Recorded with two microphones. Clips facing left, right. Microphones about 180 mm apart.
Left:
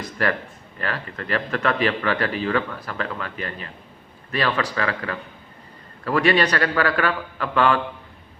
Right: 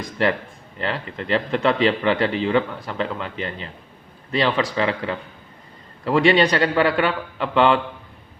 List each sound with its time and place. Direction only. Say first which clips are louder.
0.2 s speech: right 3 dB; 25° right (ahead or behind)